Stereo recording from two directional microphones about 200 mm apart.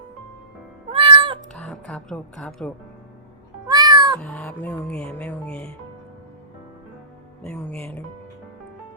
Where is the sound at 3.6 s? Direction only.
20° right (ahead or behind).